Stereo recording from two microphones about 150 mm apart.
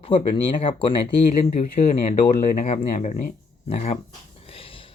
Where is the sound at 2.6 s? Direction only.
40° left (ahead or behind).